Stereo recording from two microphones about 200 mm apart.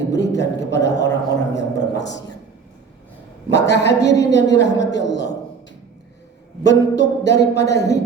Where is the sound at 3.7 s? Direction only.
60° left (ahead or behind).